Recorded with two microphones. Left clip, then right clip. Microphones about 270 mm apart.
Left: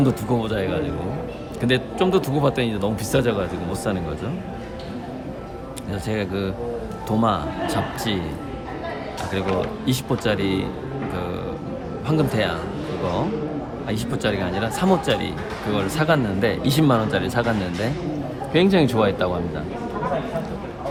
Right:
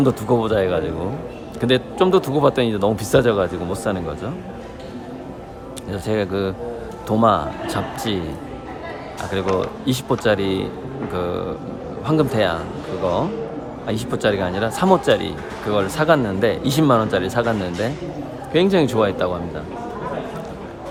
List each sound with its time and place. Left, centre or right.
0.0 s speech: centre
5.9 s speech: centre
9.8 s speech: centre
13.8 s speech: centre